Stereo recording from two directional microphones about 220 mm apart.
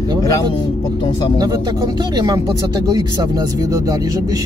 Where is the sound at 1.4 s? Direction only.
15° right (ahead or behind).